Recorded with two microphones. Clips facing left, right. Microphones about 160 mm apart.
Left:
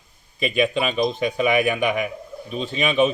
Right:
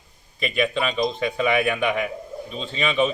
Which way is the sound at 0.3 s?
15° left (ahead or behind).